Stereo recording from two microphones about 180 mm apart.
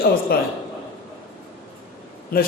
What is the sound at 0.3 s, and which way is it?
Speech, 60° left (ahead or behind).